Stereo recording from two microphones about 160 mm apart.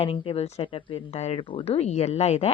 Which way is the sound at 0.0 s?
35° left (ahead or behind).